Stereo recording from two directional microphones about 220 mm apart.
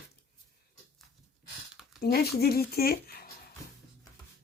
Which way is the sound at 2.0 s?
45° left (ahead or behind).